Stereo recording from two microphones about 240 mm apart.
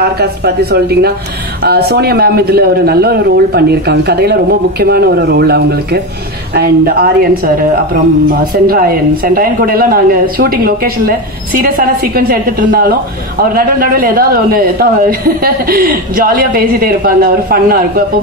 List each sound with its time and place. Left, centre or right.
0.0 s a woman's voice: right